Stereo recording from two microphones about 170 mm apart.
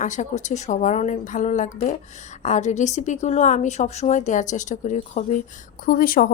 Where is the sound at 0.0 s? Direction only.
45° left (ahead or behind).